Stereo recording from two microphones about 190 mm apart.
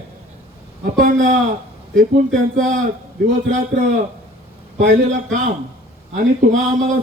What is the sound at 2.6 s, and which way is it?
Speech, 40° right (ahead or behind).